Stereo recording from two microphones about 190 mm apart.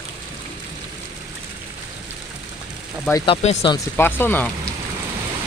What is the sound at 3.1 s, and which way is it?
Speech, 20° left (ahead or behind).